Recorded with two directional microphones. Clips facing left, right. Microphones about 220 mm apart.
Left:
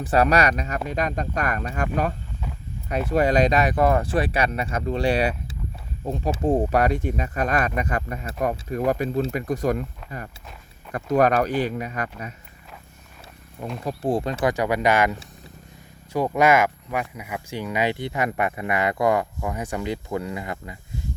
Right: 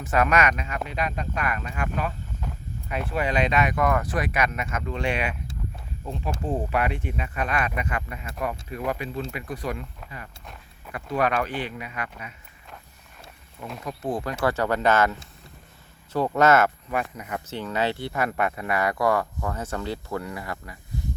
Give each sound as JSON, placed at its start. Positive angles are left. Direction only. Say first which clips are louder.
{"t": 0.0, "sound": "speech", "louder": "left 3 dB", "side_deg": 35}
{"t": 6.4, "sound": "speech", "louder": "left 6 dB", "side_deg": 40}
{"t": 10.0, "sound": "a sound", "louder": "left 5 dB", "side_deg": 0}
{"t": 10.9, "sound": "speech", "louder": "left 6 dB", "side_deg": 45}
{"t": 13.8, "sound": "speech", "louder": "left 5 dB", "side_deg": 30}
{"t": 16.1, "sound": "speech", "louder": "left 1 dB", "side_deg": 10}